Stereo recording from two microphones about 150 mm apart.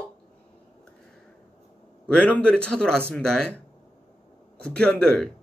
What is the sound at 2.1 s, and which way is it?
Speech, 10° left (ahead or behind).